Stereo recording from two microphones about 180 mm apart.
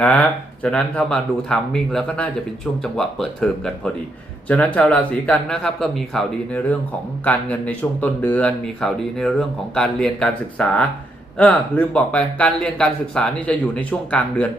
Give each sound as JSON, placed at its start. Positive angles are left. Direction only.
{"t": 0.0, "sound": "speech", "side_deg": 5}